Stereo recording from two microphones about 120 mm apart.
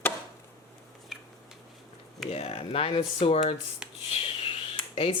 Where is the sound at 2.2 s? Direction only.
55° left (ahead or behind).